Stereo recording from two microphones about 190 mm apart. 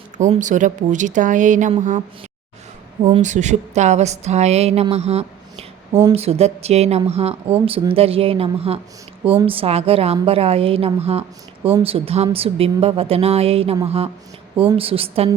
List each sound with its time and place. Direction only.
0.2 s speech: 40° right (ahead or behind)
3.0 s a woman's voice: 40° right (ahead or behind)